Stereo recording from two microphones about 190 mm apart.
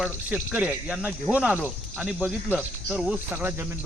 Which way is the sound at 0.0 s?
5° right (ahead or behind).